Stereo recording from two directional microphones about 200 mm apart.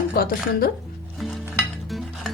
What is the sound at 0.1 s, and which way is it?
Speech, 50° left (ahead or behind).